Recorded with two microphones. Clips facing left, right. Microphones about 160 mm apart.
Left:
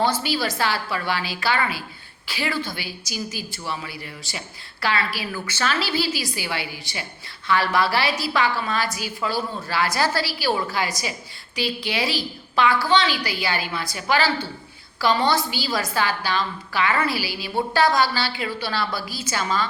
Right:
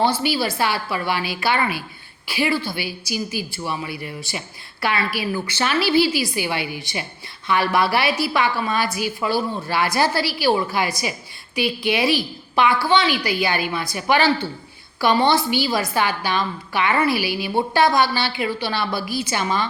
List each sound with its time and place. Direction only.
0.0 s a woman's voice: 10° right (ahead or behind)
16.0 s a woman's voice: 15° right (ahead or behind)